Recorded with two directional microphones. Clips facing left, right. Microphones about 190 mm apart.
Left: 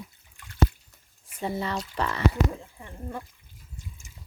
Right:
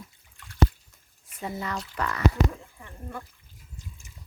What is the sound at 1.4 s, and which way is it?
Speech, 30° left (ahead or behind).